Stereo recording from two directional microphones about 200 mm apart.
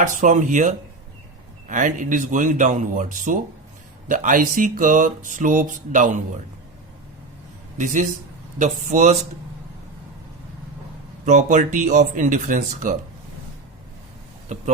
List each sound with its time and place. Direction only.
0.0 s speech: 40° right (ahead or behind)
8.5 s speech: 40° right (ahead or behind)
11.3 s speech: 35° right (ahead or behind)
14.5 s speech: 35° right (ahead or behind)